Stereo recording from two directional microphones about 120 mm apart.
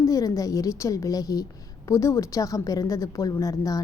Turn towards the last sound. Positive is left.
turn(degrees=25)  # may be behind; listen again after turning